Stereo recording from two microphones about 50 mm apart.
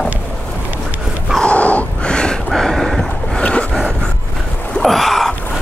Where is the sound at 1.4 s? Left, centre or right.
Left.